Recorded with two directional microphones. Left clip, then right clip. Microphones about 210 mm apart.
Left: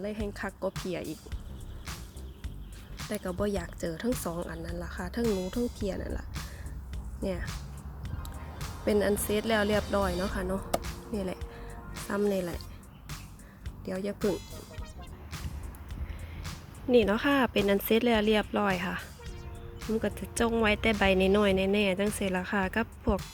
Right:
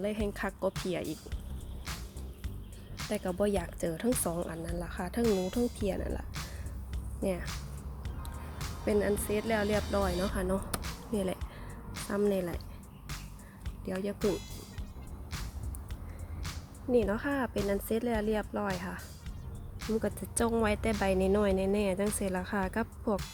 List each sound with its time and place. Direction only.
0.0 s speech: 5° right (ahead or behind)
3.0 s speech: centre (ahead or behind)
8.2 s music: centre (ahead or behind)
8.9 s speech: 15° left (ahead or behind)
9.8 s speech: centre (ahead or behind)
13.8 s speech: 5° left (ahead or behind)
16.9 s speech: 15° left (ahead or behind)
19.8 s speech: 5° left (ahead or behind)